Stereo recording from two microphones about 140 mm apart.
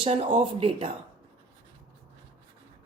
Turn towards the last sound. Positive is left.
turn(degrees=-40)  # may be behind; listen again after turning